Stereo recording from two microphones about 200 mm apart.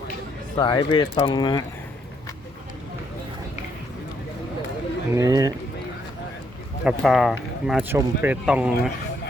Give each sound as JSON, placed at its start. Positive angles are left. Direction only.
{"t": 0.5, "sound": "speech", "side_deg": 20}
{"t": 5.1, "sound": "speech", "side_deg": -15}
{"t": 6.8, "sound": "speech", "side_deg": 0}